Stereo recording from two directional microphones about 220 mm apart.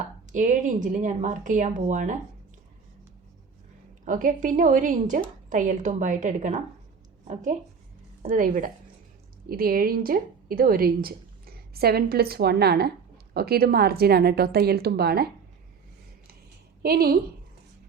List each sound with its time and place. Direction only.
0.3 s a woman's voice: 35° right (ahead or behind)
4.0 s a woman's voice: 35° right (ahead or behind)
16.8 s a woman's voice: 45° right (ahead or behind)